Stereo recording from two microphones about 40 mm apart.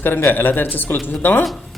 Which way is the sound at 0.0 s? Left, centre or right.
Left.